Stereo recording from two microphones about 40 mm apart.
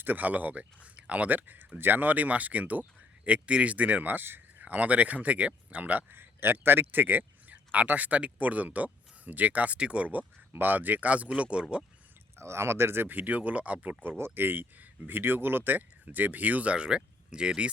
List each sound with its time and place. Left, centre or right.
0.0 s speech: right
3.2 s speech: right
4.6 s speech: right
6.1 s a man's voice: right
7.5 s speech: right
9.7 s speech: right
10.5 s speech: right
12.4 s speech: right
12.8 s speech: right
13.1 s speech: right
14.2 s speech: right
16.7 s speech: right